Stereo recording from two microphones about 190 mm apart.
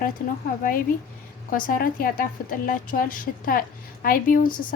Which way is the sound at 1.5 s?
45° left (ahead or behind).